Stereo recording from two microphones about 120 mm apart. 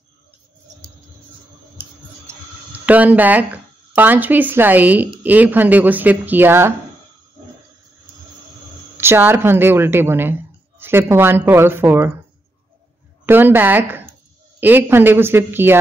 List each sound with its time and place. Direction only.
1.8 s a sound: 15° right (ahead or behind)
3.9 s speech: 15° right (ahead or behind)
8.9 s speech: 20° right (ahead or behind)
13.2 s speech: 15° right (ahead or behind)